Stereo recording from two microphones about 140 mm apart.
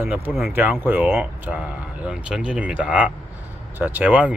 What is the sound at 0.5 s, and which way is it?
Speech, 15° right (ahead or behind).